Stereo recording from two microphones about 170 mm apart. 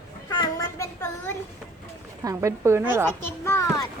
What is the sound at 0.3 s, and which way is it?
Child singing, 25° left (ahead or behind).